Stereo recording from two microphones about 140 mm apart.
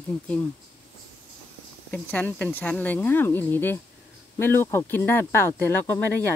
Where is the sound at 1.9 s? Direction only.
10° left (ahead or behind).